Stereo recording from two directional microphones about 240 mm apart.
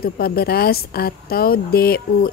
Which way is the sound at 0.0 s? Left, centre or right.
Left.